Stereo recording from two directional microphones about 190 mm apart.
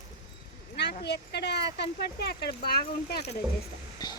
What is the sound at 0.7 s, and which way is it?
Speech, 60° left (ahead or behind).